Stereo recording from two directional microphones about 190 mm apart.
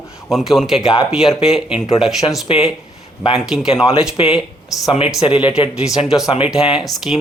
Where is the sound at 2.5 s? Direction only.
30° left (ahead or behind).